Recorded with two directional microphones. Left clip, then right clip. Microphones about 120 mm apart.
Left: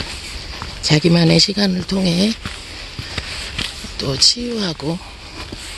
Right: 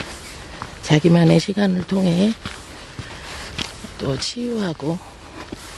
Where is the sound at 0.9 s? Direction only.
30° right (ahead or behind).